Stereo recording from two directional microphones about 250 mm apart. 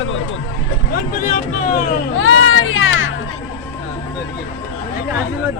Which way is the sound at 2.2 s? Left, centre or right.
Left.